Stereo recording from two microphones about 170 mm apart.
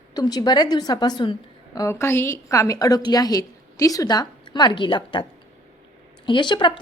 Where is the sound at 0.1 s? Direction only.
20° left (ahead or behind).